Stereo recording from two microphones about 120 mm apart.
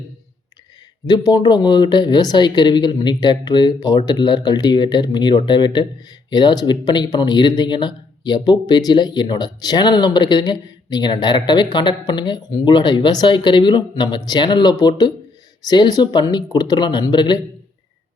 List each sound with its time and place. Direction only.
1.0 s speech: 35° left (ahead or behind)